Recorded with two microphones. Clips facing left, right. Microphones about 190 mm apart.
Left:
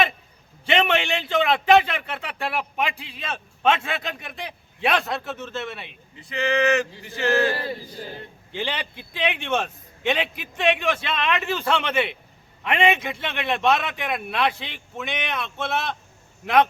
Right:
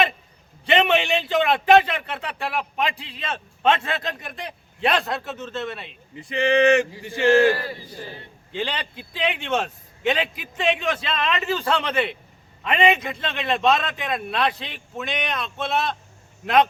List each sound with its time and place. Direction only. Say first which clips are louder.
0.6 s a man's voice: right 2 dB; centre (ahead or behind)
6.1 s speech: right 4 dB; 20° right (ahead or behind)
6.9 s chant: right 5 dB; 15° right (ahead or behind)
8.5 s a man's voice: right 1 dB; centre (ahead or behind)